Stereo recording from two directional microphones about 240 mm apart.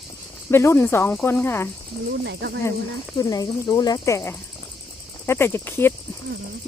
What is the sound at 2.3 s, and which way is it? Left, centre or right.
Speech, right.